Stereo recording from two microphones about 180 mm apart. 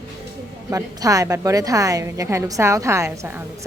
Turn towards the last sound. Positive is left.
turn(degrees=-10)  # may be behind; listen again after turning